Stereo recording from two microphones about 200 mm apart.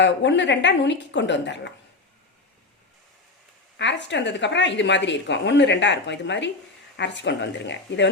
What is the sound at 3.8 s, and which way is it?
Speech, 60° left (ahead or behind).